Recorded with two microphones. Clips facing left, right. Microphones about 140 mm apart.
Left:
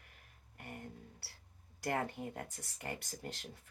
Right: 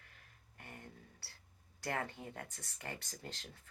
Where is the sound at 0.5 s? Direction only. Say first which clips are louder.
Left 5 dB; 15° left (ahead or behind).